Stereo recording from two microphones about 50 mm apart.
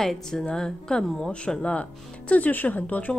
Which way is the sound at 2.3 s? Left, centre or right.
Left.